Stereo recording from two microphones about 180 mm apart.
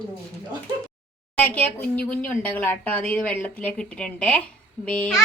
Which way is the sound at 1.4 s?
10° left (ahead or behind).